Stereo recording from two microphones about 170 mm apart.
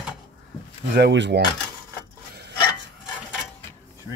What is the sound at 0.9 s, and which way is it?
Speech, 85° right.